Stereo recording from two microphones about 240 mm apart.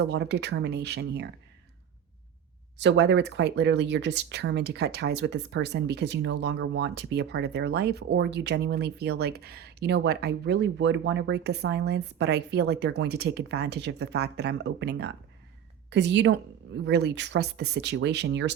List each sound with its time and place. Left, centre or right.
0.0 s speech: right
2.7 s speech: right